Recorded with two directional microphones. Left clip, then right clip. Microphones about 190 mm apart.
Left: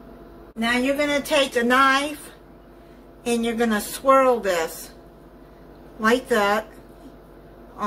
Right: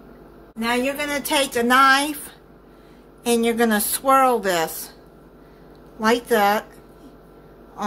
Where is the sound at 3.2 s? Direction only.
45° right (ahead or behind).